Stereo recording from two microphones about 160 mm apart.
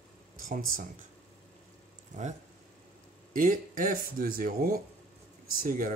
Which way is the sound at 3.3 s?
55° right (ahead or behind).